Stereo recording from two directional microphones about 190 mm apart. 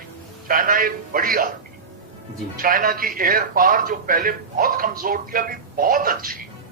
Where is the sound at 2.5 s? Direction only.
50° right (ahead or behind).